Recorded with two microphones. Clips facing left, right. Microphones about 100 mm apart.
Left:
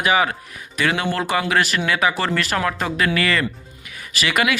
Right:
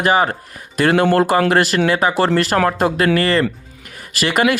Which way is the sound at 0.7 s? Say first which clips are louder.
Right 8 dB; 45° right (ahead or behind).